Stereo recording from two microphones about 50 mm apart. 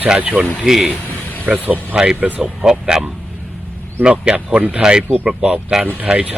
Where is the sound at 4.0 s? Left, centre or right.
Right.